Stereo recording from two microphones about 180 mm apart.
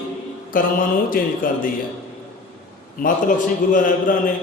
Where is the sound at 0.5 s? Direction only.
50° left (ahead or behind).